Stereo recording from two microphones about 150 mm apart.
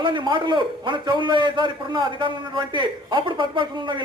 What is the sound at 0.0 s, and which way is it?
A man's voice, 30° right (ahead or behind).